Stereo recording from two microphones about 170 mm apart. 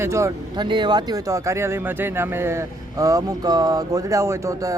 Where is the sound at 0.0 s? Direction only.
15° right (ahead or behind).